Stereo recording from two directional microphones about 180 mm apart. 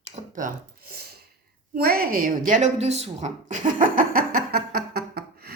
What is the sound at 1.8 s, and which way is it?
Speech, 55° right (ahead or behind).